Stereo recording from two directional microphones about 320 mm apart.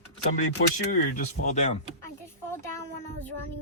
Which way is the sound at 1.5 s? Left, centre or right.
Left.